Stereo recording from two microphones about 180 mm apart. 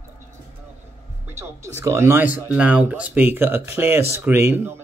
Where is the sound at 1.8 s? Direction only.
15° right (ahead or behind).